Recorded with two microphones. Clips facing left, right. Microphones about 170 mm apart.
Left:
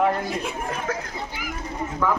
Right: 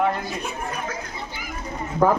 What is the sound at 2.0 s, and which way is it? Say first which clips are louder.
Speech: right 5 dB; 40° right (ahead or behind).